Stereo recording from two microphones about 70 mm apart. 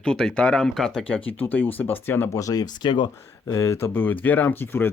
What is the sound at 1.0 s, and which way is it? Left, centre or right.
Speech, left.